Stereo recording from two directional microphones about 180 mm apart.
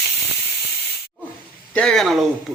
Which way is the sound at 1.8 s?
5° left (ahead or behind).